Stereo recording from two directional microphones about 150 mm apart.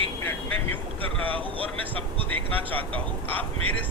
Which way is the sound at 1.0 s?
35° right (ahead or behind).